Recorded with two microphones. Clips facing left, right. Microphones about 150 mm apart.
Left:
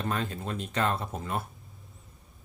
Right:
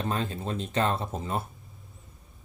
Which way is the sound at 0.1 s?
30° right (ahead or behind).